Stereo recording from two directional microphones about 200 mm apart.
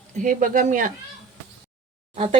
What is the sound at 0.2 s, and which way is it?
Speech, 40° right (ahead or behind).